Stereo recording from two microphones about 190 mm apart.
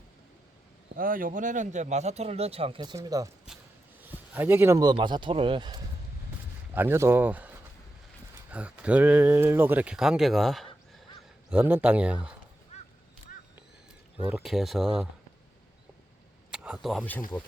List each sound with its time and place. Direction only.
0.9 s speech: 50° right (ahead or behind); by 3.2 s 20° right (ahead or behind)
4.4 s speech: 10° right (ahead or behind)
6.7 s speech: 10° right (ahead or behind)
11.5 s speech: 10° right (ahead or behind)
12.7 s a sound: 35° left (ahead or behind)
14.3 s speech: 5° right (ahead or behind)
16.5 s speech: 5° right (ahead or behind)